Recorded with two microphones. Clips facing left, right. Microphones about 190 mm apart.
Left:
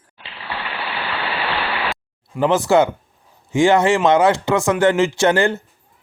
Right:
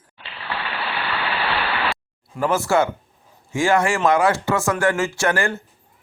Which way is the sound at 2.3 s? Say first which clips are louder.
Left 4 dB; 20° left (ahead or behind).